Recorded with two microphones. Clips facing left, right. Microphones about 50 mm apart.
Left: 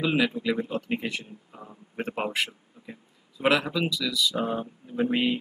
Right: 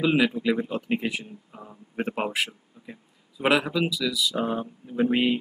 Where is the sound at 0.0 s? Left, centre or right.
Centre.